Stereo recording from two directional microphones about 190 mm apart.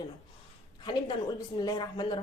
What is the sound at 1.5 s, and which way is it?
Speech, 20° left (ahead or behind).